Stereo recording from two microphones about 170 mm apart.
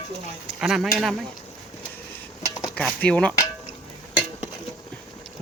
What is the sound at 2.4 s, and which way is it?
Cutlery, 20° left (ahead or behind).